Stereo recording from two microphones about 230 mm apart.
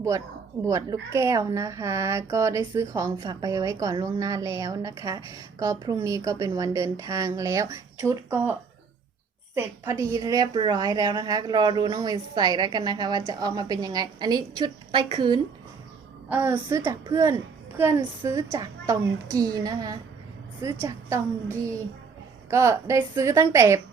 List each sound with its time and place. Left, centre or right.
0.6 s speech: centre
10.0 s speech: centre
16.3 s speech: centre